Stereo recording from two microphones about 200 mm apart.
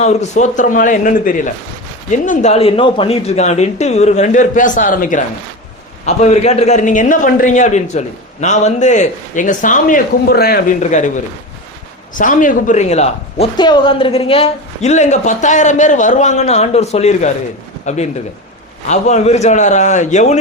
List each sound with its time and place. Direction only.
0.0 s a man's voice: 35° left (ahead or behind); by 10.8 s 50° left (ahead or behind)
10.8 s a man's voice: 40° left (ahead or behind)
12.1 s a man's voice: 40° left (ahead or behind)
13.6 s a man's voice: 20° left (ahead or behind)